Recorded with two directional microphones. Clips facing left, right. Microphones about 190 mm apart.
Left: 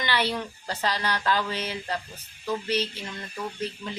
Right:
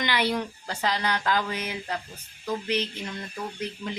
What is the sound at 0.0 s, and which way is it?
Speech, 15° right (ahead or behind).